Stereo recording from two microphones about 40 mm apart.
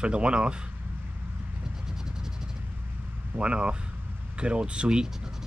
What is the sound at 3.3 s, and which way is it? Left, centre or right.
Speech, right.